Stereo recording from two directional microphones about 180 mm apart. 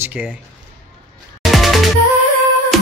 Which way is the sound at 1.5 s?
Centre (ahead or behind).